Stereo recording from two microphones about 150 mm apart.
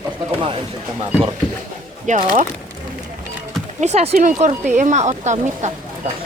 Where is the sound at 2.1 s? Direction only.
55° right (ahead or behind).